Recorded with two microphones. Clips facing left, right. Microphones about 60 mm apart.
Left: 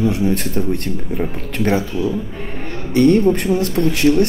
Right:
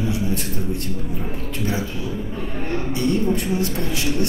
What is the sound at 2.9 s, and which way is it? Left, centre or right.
Speech, left.